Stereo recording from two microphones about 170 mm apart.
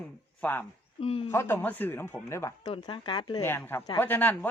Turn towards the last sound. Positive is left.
turn(degrees=10)  # may be behind; listen again after turning